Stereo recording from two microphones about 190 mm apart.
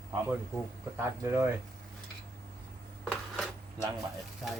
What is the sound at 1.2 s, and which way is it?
Speech, 10° right (ahead or behind).